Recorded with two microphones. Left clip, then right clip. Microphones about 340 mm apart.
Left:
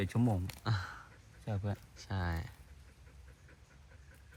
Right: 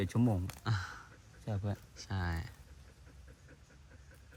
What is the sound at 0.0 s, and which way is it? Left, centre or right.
Speech, centre.